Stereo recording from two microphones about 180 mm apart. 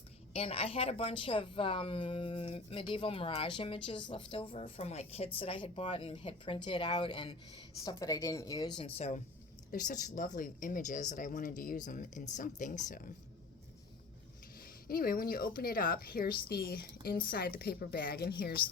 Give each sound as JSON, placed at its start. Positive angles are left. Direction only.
{"t": 0.3, "sound": "a woman's voice", "side_deg": 30}
{"t": 9.0, "sound": "a woman's voice", "side_deg": 35}
{"t": 14.8, "sound": "a woman's voice", "side_deg": 55}